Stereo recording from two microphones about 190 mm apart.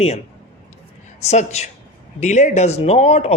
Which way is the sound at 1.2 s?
35° left (ahead or behind).